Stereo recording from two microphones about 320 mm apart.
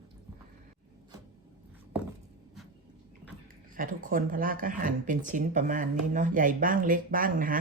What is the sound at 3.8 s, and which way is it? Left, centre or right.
Speech, right.